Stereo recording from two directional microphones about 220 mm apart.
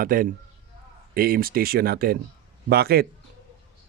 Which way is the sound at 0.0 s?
40° right (ahead or behind).